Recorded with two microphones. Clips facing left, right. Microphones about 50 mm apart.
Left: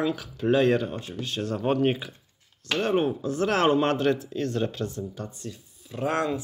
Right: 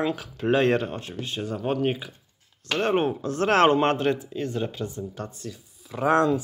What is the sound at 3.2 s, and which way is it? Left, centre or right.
Speech, right.